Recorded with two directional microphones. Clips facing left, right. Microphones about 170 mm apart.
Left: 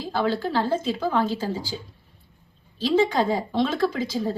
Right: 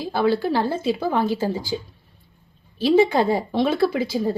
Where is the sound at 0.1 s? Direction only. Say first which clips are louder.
Right 4 dB; 10° right (ahead or behind).